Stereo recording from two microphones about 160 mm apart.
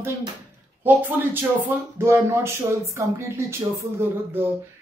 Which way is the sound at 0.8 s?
10° right (ahead or behind).